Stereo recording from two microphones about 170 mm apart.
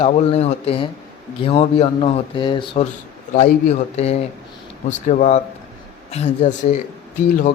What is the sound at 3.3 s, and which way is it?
A man's voice, 40° left (ahead or behind).